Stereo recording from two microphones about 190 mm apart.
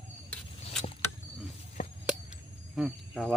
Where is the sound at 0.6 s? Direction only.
35° left (ahead or behind).